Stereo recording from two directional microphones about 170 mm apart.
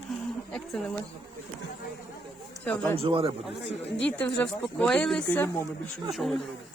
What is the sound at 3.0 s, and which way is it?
Speech, 30° right (ahead or behind).